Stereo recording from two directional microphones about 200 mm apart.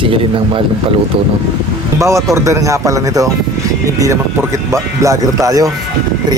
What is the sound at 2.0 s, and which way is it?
Speech, 15° right (ahead or behind).